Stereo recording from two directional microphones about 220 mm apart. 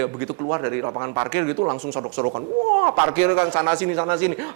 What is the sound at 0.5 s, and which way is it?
A man's voice, 15° right (ahead or behind).